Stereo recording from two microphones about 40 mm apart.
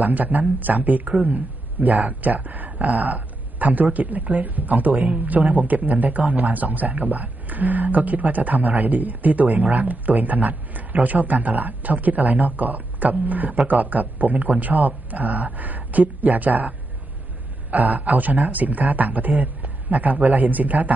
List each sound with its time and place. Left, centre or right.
0.1 s a man's voice: right
3.1 s a sound: right
3.9 s a man's voice: right